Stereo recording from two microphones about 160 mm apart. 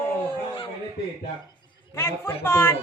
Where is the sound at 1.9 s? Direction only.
15° left (ahead or behind).